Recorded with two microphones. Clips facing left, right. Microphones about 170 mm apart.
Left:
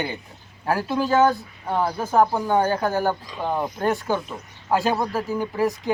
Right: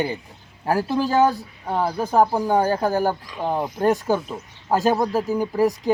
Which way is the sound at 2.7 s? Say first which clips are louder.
Right 2 dB; 35° right (ahead or behind).